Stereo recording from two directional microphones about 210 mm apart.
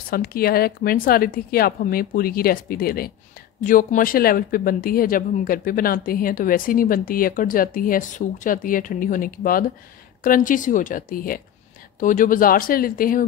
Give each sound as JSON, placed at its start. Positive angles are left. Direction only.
{"t": 0.1, "sound": "speech", "side_deg": 45}